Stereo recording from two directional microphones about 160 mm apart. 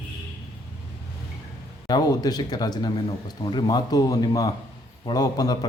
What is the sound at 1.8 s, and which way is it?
A man's voice, 25° left (ahead or behind).